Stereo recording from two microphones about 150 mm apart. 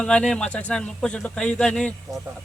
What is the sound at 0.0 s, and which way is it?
A man's voice, 5° left (ahead or behind).